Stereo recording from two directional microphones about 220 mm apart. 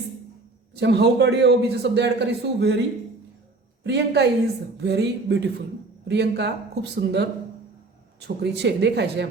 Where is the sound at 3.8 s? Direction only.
50° right (ahead or behind).